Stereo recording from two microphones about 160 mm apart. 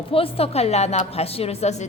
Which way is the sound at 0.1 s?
35° left (ahead or behind).